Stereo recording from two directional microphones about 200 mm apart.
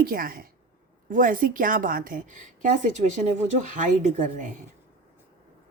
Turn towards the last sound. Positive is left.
turn(degrees=-40)  # may be behind; listen again after turning